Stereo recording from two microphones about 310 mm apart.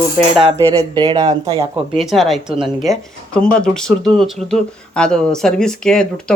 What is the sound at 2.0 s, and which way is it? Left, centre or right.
Speech, centre.